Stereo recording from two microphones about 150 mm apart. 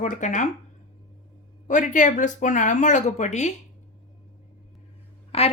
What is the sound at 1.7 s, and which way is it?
A woman's voice, 60° left (ahead or behind).